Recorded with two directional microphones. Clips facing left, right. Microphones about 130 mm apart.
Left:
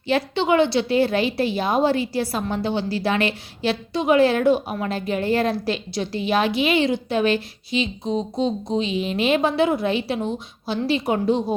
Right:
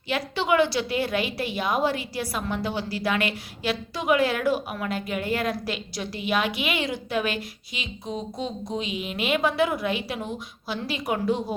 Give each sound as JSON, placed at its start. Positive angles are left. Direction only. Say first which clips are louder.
{"t": 0.1, "sound": "a woman's voice", "louder": "left 5 dB", "side_deg": 25}